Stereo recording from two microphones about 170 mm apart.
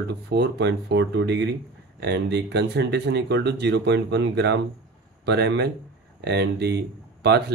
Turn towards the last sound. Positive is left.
turn(degrees=-75)  # may be behind; listen again after turning